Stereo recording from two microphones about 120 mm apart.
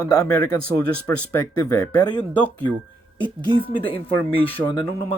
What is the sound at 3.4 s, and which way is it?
Speech, 45° right (ahead or behind).